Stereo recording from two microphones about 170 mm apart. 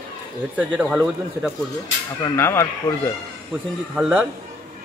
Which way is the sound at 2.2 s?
15° left (ahead or behind).